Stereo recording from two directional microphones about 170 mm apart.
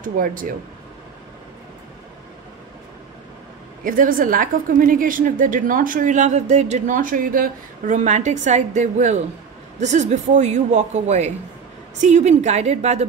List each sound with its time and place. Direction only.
0.0 s a woman's voice: 55° right (ahead or behind)
3.8 s a woman's voice: 55° right (ahead or behind)